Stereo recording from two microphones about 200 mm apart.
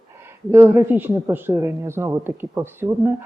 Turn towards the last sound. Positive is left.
turn(degrees=-10)  # may be behind; listen again after turning